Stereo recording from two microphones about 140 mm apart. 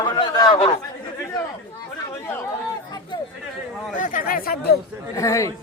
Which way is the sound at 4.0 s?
70° left (ahead or behind).